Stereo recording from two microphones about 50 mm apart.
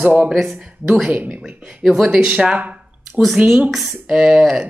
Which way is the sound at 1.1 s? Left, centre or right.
Right.